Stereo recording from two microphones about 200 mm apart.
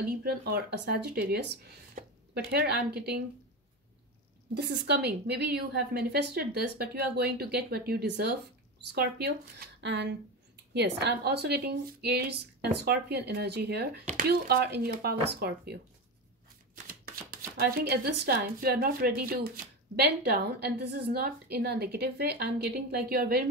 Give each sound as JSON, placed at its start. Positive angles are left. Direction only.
{"t": 0.0, "sound": "speech", "side_deg": -50}
{"t": 4.6, "sound": "speech", "side_deg": -55}
{"t": 9.8, "sound": "a woman's voice", "side_deg": -60}
{"t": 16.8, "sound": "speech", "side_deg": -50}